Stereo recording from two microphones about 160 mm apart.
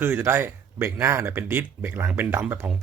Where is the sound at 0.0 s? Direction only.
15° right (ahead or behind).